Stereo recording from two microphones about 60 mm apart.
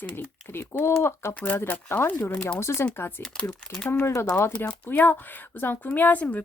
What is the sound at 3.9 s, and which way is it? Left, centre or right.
Speech, left.